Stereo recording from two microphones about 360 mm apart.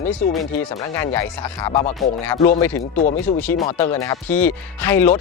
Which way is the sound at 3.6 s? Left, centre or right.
Centre.